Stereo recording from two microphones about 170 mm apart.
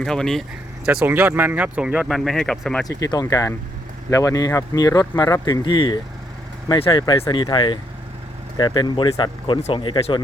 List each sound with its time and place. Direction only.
0.0 s speech: 5° left (ahead or behind)
0.9 s speech: 10° right (ahead or behind)
2.8 s speech: 20° left (ahead or behind)